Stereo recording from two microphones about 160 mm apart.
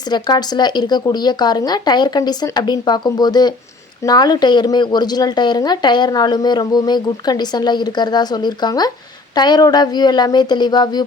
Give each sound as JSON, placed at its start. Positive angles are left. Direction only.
{"t": 0.0, "sound": "speech", "side_deg": 25}